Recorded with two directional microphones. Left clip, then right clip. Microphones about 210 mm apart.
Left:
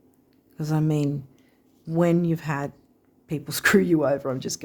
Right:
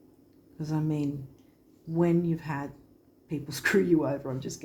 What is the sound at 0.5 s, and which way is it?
Speech, 55° left (ahead or behind).